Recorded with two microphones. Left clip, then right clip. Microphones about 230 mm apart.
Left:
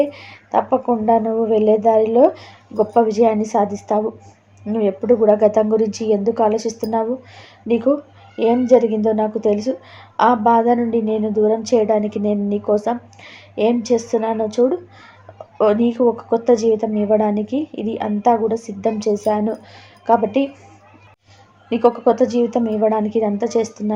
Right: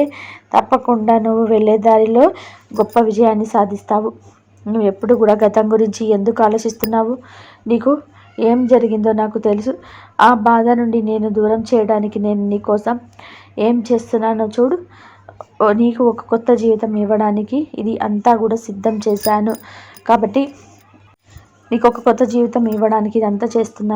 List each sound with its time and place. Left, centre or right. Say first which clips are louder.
0.0 s a woman's voice: right 1 dB; right
15.5 s a woman's voice: right 2 dB; centre
21.7 s a woman's voice: right 2 dB; right